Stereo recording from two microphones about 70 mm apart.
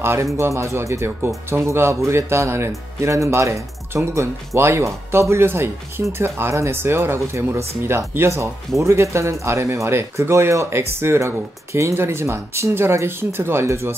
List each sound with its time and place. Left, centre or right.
0.0 s speech: right